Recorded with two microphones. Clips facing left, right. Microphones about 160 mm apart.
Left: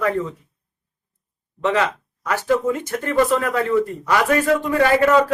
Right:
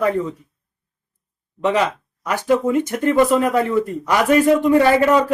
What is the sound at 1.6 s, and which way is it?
Speech, 15° right (ahead or behind).